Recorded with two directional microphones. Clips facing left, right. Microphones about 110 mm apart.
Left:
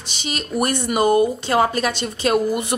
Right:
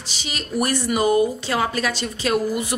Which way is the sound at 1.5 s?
35° left (ahead or behind).